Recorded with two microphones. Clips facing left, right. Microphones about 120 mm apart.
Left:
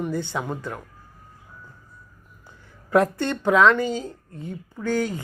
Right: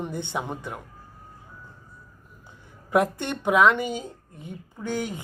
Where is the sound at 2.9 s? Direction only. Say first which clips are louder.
Left 3 dB; 15° right (ahead or behind).